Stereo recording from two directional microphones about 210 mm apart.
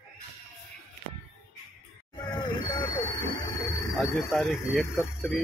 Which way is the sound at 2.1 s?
20° left (ahead or behind).